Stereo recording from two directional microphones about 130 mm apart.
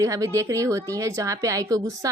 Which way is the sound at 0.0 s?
25° right (ahead or behind).